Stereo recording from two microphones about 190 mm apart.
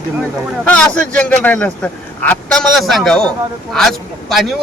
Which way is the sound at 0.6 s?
5° left (ahead or behind).